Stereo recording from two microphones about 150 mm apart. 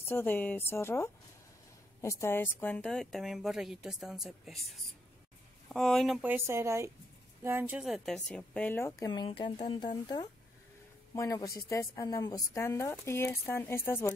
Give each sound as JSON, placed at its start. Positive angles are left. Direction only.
{"t": 0.0, "sound": "speech", "side_deg": 15}
{"t": 6.2, "sound": "speech", "side_deg": -15}
{"t": 7.8, "sound": "speech", "side_deg": 0}
{"t": 9.1, "sound": "speech", "side_deg": 30}